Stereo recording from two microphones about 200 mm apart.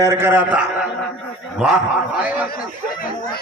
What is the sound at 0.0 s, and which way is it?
A man's voice, 15° right (ahead or behind).